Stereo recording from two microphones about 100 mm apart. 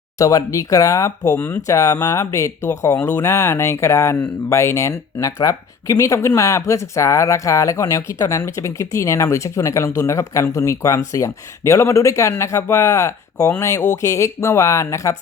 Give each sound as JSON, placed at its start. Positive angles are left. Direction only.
{"t": 0.2, "sound": "speech", "side_deg": 35}
{"t": 1.6, "sound": "speech", "side_deg": 30}